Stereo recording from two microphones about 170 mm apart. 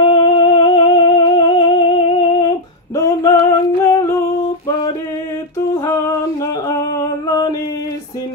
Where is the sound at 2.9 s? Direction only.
20° left (ahead or behind).